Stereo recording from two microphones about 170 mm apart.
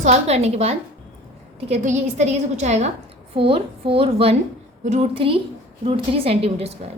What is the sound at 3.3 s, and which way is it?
A woman's voice, 30° right (ahead or behind).